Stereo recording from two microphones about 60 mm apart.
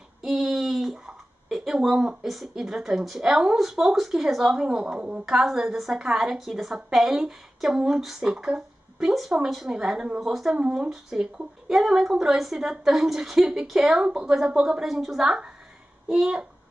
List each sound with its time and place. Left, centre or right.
0.2 s a sound: centre
2.2 s a woman's voice: centre
5.2 s a woman's voice: centre
14.9 s a woman's voice: centre